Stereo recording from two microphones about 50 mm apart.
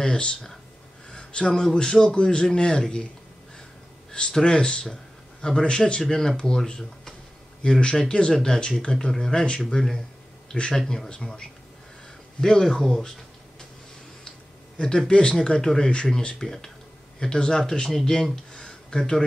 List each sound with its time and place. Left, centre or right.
0.0 s a man's voice: centre
4.1 s a man's voice: centre
14.8 s a man's voice: centre